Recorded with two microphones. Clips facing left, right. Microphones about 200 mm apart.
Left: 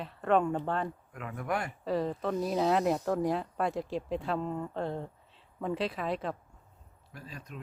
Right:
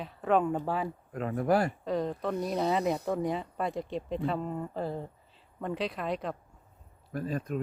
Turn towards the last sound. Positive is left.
turn(degrees=-50)  # may be behind; listen again after turning